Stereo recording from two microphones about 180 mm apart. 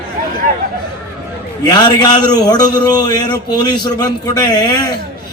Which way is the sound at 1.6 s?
20° left (ahead or behind).